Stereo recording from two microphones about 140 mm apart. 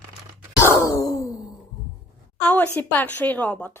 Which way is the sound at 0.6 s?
20° left (ahead or behind).